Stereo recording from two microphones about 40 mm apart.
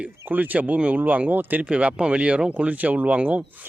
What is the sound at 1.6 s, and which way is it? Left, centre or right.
Speech, right.